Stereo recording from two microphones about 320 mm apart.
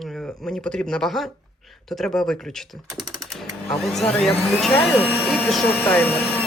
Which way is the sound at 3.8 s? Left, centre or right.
Centre.